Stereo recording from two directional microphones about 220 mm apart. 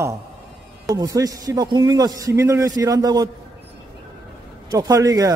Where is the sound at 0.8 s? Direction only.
15° right (ahead or behind).